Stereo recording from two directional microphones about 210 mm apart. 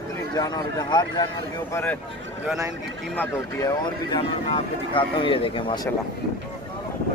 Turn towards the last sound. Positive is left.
turn(degrees=25)  # may be behind; listen again after turning